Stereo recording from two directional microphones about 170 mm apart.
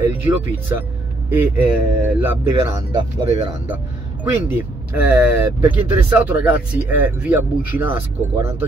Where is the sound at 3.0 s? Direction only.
35° right (ahead or behind).